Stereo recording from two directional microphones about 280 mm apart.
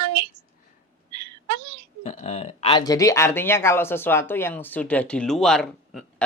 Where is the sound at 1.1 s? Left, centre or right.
Right.